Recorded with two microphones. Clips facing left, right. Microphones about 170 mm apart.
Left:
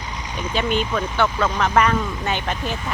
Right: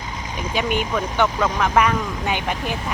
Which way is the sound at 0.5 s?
10° right (ahead or behind).